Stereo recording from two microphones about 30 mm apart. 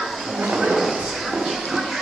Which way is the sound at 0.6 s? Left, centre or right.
Centre.